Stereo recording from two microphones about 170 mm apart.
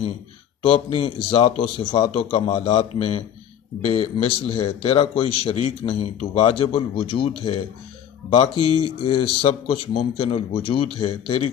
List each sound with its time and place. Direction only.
0.7 s a man's voice: 35° left (ahead or behind)